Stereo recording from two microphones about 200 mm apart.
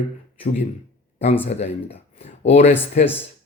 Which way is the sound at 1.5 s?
30° left (ahead or behind).